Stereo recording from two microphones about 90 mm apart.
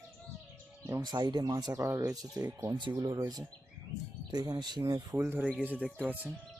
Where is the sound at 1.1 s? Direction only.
55° right (ahead or behind).